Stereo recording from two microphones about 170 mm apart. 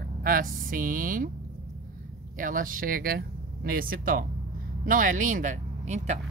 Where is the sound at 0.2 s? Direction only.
55° right (ahead or behind).